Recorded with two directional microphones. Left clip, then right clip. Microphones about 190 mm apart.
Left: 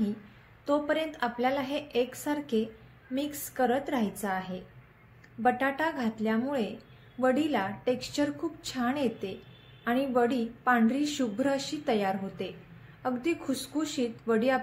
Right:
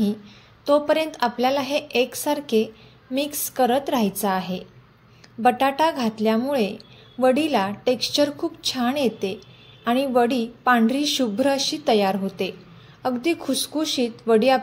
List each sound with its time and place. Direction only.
0.7 s a woman's voice: 35° right (ahead or behind)